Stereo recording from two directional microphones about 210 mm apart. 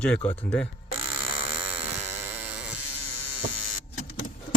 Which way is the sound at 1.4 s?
25° right (ahead or behind).